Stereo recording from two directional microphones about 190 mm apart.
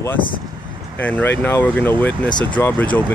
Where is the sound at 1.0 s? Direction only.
10° left (ahead or behind).